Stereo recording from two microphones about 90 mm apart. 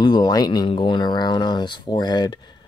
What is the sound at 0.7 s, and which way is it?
Speech, 65° left (ahead or behind).